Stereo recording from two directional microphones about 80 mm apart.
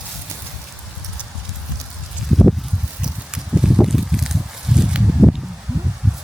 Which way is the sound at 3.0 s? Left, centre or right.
Centre.